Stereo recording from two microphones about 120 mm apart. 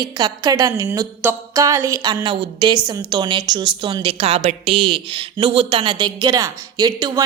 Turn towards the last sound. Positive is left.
turn(degrees=-35)  # may be behind; listen again after turning